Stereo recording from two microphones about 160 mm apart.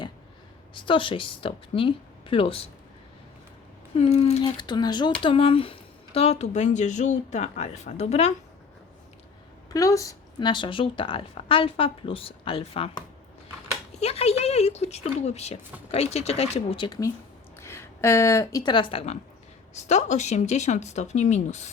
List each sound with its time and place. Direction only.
0.7 s a woman's voice: 30° left (ahead or behind)
3.9 s a woman's voice: 40° left (ahead or behind)
4.4 s a woman's voice: 25° left (ahead or behind)
9.7 s a woman's voice: 20° left (ahead or behind); by 13.0 s 35° left (ahead or behind)
14.0 s a woman's voice: 40° left (ahead or behind)
17.6 s speech: 15° left (ahead or behind); by 21.7 s 45° left (ahead or behind)